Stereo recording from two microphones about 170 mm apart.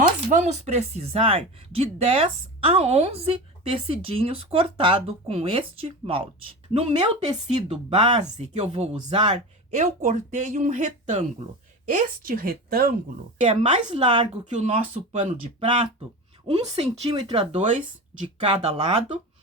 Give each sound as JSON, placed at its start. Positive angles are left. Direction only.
{"t": 0.3, "sound": "speech", "side_deg": -45}
{"t": 9.7, "sound": "a woman's voice", "side_deg": -45}
{"t": 13.5, "sound": "speech", "side_deg": -30}
{"t": 14.5, "sound": "speech", "side_deg": -40}
{"t": 16.5, "sound": "speech", "side_deg": -35}